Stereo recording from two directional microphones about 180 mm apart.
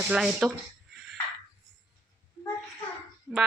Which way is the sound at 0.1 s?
5° right (ahead or behind).